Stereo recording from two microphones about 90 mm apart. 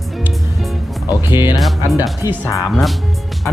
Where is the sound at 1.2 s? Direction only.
25° right (ahead or behind).